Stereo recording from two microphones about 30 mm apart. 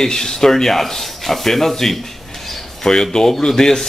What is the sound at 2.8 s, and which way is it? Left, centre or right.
Speech, centre.